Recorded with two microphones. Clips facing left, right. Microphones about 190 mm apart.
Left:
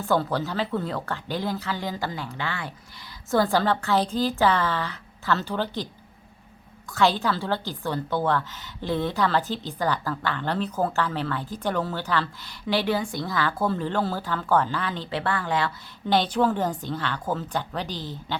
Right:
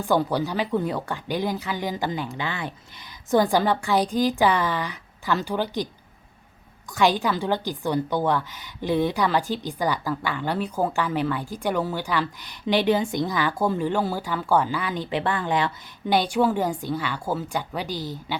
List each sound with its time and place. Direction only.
0.0 s a woman's voice: 15° right (ahead or behind)
6.9 s a woman's voice: 15° right (ahead or behind)